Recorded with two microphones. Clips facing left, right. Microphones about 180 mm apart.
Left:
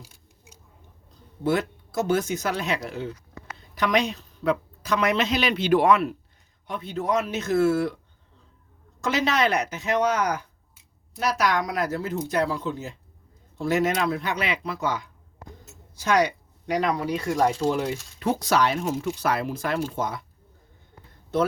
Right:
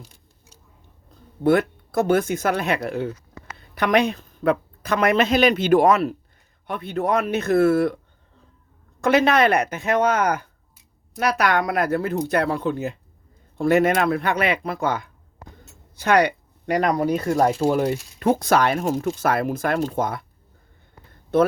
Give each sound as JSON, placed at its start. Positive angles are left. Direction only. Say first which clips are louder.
{"t": 0.0, "sound": "a sound", "louder": "right 2 dB", "side_deg": 10}
{"t": 1.5, "sound": "speech", "louder": "right 6 dB", "side_deg": -55}
{"t": 6.7, "sound": "speech", "louder": "right 4 dB", "side_deg": -60}
{"t": 9.0, "sound": "speech", "louder": "right 6 dB", "side_deg": -60}
{"t": 21.3, "sound": "speech", "louder": "right 6 dB", "side_deg": -55}